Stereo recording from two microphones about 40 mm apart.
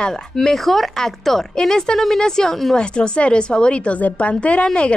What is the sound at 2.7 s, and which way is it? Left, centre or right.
A woman's voice, left.